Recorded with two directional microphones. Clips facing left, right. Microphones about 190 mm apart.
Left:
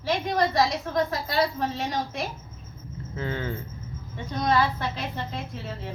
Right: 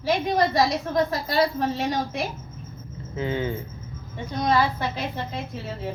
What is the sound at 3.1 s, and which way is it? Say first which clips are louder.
Speech: right 4 dB; 20° right (ahead or behind).